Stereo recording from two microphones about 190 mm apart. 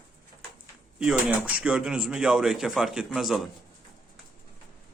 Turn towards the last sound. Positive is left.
turn(degrees=0)  # may be behind; listen again after turning